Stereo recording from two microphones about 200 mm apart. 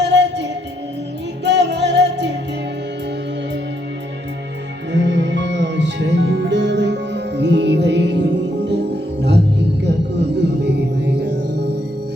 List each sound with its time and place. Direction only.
0.0 s music: 60° right (ahead or behind)
1.5 s music: 60° right (ahead or behind)
4.9 s music: 60° right (ahead or behind)